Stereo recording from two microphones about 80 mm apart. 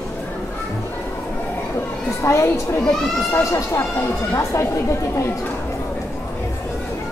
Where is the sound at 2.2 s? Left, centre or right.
Left.